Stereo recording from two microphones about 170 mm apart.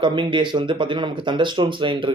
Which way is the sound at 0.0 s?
30° right (ahead or behind).